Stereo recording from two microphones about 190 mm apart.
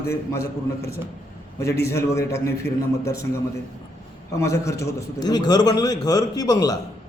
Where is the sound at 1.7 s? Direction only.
15° left (ahead or behind).